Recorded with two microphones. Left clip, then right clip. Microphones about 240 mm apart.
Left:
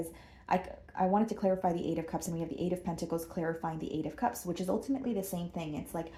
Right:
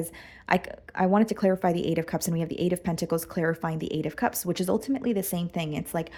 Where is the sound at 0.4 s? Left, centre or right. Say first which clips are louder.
Right 6 dB; right.